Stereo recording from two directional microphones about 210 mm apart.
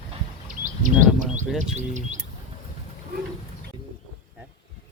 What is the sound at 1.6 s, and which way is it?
Speech, 35° right (ahead or behind).